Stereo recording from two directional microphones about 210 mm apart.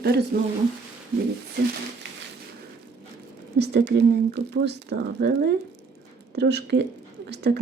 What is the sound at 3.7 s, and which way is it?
Speech, 55° right (ahead or behind).